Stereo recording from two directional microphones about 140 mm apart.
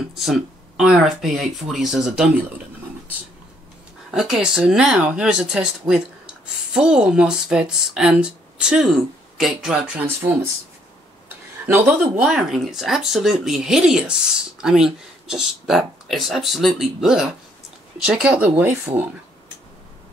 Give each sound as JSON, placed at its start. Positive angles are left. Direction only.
{"t": 0.1, "sound": "speech", "side_deg": 0}
{"t": 4.1, "sound": "speech", "side_deg": -5}
{"t": 11.6, "sound": "a man's voice", "side_deg": -15}
{"t": 12.2, "sound": "speech", "side_deg": -5}